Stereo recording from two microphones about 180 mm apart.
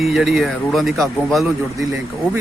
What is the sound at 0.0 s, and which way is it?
Speech, centre (ahead or behind).